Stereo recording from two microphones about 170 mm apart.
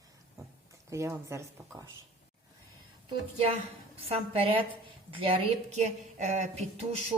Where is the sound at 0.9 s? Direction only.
15° right (ahead or behind).